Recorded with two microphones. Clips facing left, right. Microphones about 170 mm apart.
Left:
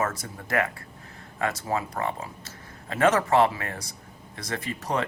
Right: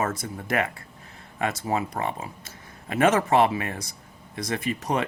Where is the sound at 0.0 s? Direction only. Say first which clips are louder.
Right 1 dB; 20° right (ahead or behind).